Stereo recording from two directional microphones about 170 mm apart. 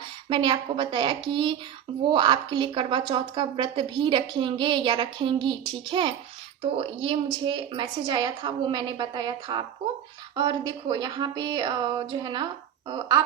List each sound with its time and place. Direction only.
0.3 s speech: 30° right (ahead or behind)